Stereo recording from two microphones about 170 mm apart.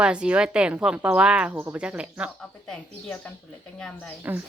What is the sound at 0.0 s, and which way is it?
Speech, 5° right (ahead or behind).